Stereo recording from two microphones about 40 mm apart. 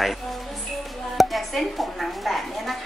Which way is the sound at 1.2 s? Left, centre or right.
Centre.